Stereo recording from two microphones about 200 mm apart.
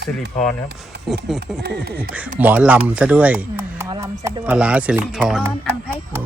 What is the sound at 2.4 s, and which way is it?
Speech, 10° right (ahead or behind).